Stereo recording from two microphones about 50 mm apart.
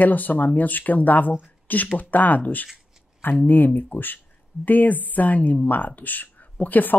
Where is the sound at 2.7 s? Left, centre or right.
Left.